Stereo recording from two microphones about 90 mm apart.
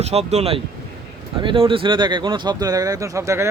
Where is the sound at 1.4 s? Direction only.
70° right (ahead or behind).